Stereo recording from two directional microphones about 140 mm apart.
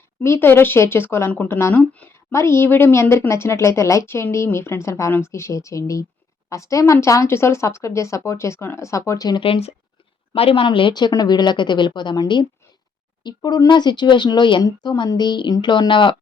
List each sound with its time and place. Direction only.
0.2 s a woman's voice: 15° left (ahead or behind)
9.4 s speech: 45° left (ahead or behind)